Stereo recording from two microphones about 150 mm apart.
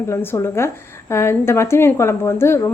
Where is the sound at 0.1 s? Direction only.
15° left (ahead or behind).